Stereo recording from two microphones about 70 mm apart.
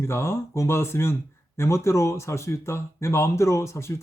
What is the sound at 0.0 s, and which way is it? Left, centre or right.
Speech, left.